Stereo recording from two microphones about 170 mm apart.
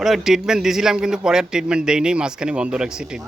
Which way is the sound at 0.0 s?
Centre (ahead or behind).